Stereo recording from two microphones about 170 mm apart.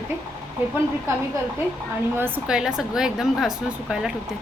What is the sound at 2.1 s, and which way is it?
Speech, 10° right (ahead or behind).